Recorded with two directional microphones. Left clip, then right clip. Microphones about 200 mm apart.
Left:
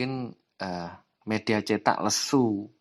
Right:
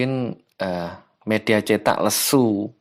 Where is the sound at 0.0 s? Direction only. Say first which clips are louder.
Right 8 dB; 25° right (ahead or behind).